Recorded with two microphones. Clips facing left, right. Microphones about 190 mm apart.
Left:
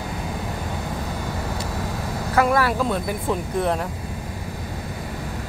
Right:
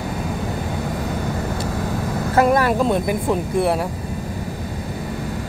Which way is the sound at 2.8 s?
15° right (ahead or behind).